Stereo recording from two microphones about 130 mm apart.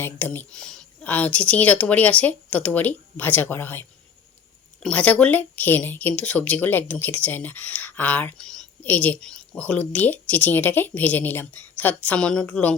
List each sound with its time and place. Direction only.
0.0 s speech: 15° left (ahead or behind)